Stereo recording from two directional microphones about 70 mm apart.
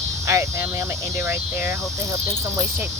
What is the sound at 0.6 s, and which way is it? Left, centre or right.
Speech, right.